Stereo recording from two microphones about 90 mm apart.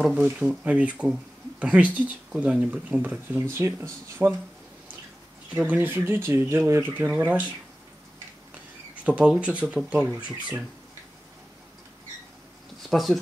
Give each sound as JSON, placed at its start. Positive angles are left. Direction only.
{"t": 0.0, "sound": "speech", "side_deg": -5}
{"t": 3.3, "sound": "speech", "side_deg": -30}
{"t": 5.6, "sound": "speech", "side_deg": -20}
{"t": 7.1, "sound": "speech", "side_deg": -15}
{"t": 9.0, "sound": "speech", "side_deg": -10}
{"t": 12.9, "sound": "speech", "side_deg": 0}